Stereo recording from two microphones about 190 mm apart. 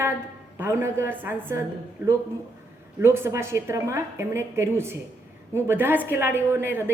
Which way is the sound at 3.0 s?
15° right (ahead or behind).